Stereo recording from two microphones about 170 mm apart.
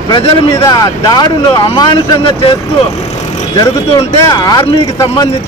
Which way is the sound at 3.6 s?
20° left (ahead or behind).